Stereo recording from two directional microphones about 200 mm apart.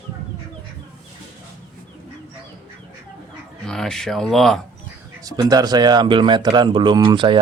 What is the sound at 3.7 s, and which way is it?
Speech, 5° left (ahead or behind).